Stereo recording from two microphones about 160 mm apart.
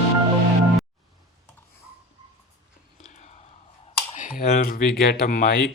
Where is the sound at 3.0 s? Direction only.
45° left (ahead or behind).